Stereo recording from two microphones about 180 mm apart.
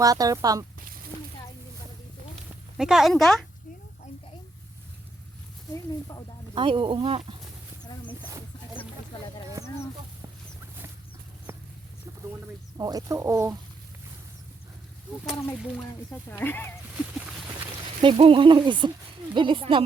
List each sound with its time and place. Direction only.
0.0 s speech: 20° right (ahead or behind)
2.7 s a woman's voice: 5° right (ahead or behind)
5.7 s speech: 20° left (ahead or behind)
6.5 s speech: 30° right (ahead or behind)
11.5 s livestock: 15° right (ahead or behind)
12.7 s speech: 20° right (ahead or behind)
16.3 s speech: 10° left (ahead or behind)
18.0 s speech: 30° right (ahead or behind)